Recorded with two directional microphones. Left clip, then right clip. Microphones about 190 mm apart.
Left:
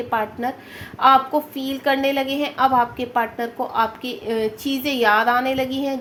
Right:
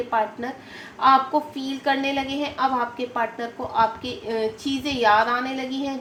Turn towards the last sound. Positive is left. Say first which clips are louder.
# left 6 dB
turn(degrees=55)  # may be behind; listen again after turning